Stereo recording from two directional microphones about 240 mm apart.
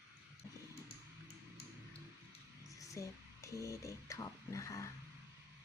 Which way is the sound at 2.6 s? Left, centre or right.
Centre.